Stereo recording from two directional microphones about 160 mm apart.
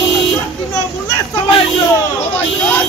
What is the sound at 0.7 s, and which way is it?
Children playing, 25° left (ahead or behind).